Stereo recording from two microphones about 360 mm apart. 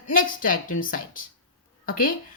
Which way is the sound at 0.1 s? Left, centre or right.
Left.